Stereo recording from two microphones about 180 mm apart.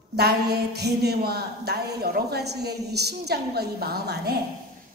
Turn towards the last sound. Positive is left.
turn(degrees=-60)  # may be behind; listen again after turning